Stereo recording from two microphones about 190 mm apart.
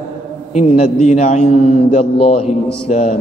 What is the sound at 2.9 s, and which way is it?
Speech, 35° left (ahead or behind).